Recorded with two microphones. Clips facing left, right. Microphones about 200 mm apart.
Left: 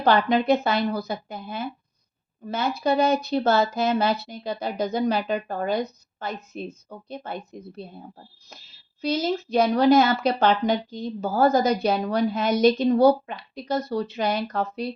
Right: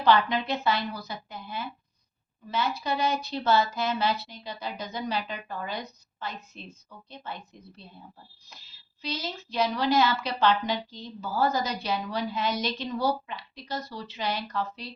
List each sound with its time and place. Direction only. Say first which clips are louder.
0.0 s a woman's voice: left 4 dB; 50° left (ahead or behind)
9.0 s a woman's voice: left 11 dB; 45° left (ahead or behind)